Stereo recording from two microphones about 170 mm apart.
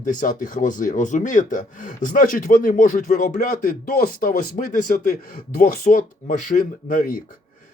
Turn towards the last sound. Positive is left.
turn(degrees=55)  # may be behind; listen again after turning